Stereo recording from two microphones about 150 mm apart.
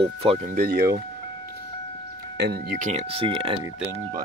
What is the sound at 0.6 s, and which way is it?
Speech, 90° right.